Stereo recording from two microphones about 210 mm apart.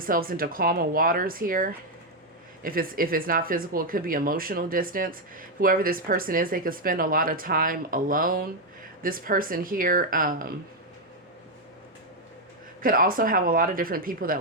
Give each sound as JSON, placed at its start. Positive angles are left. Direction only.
{"t": 0.0, "sound": "speech", "side_deg": -45}
{"t": 12.8, "sound": "speech", "side_deg": -40}